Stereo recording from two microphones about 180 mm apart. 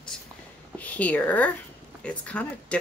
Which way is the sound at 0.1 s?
5° left (ahead or behind).